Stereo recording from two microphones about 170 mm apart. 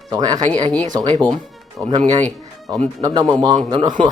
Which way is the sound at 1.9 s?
35° right (ahead or behind).